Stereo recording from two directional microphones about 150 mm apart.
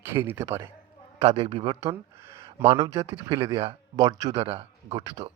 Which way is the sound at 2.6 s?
40° right (ahead or behind).